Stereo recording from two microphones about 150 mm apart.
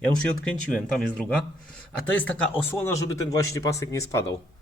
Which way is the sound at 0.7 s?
5° left (ahead or behind).